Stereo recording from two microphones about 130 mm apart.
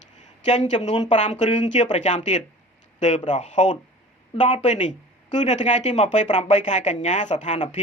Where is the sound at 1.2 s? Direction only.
65° left (ahead or behind).